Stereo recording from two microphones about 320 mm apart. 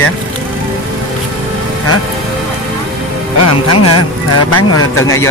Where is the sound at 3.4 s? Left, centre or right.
Left.